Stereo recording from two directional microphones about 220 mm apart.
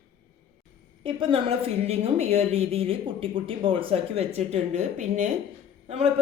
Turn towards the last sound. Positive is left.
turn(degrees=-30)  # may be behind; listen again after turning